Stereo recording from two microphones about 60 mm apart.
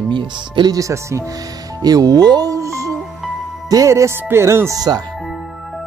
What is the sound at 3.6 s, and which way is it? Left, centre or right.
Speech, right.